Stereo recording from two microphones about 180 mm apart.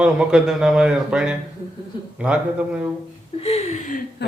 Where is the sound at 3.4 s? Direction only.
35° left (ahead or behind).